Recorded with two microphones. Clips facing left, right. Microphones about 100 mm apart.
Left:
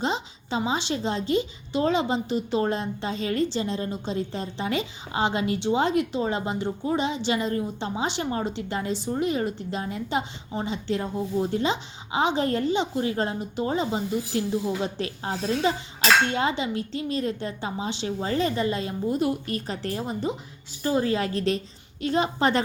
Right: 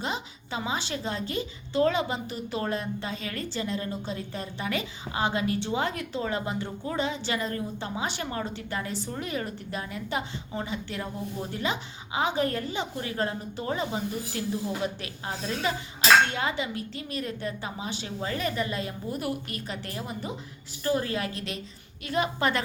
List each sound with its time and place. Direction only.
0.0 s a woman's voice: 25° left (ahead or behind)